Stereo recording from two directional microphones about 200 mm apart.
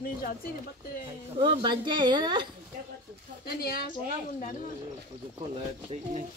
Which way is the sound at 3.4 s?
50° left (ahead or behind).